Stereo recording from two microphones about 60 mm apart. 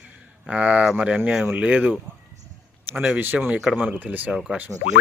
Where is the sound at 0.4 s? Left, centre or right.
Centre.